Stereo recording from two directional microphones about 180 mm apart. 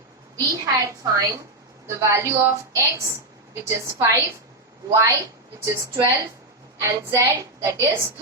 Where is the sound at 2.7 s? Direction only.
15° right (ahead or behind).